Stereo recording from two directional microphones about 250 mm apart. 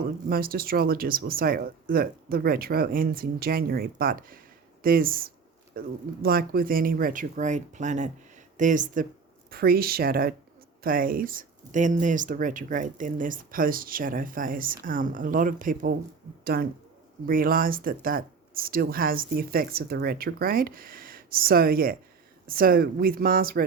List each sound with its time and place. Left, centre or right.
0.3 s speech: right